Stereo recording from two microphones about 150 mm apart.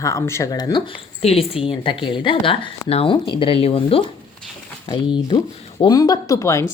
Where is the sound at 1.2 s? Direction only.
40° left (ahead or behind).